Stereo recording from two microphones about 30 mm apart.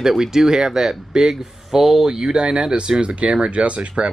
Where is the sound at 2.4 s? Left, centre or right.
Right.